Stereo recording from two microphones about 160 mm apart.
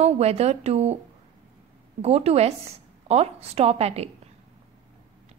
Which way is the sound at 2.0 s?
40° right (ahead or behind).